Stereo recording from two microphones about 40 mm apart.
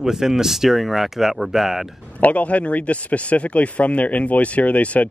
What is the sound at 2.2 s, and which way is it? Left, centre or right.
Speech, left.